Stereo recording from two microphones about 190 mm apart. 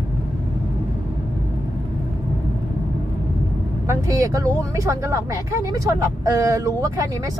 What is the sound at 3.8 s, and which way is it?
Speech, 15° right (ahead or behind).